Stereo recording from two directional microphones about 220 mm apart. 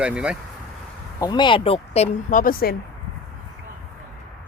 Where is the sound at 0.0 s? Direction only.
5° right (ahead or behind).